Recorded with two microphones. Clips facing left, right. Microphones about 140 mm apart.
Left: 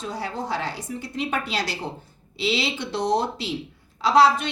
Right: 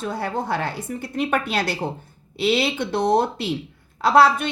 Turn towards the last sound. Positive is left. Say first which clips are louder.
# right 2 dB
turn(degrees=-55)  # may be behind; listen again after turning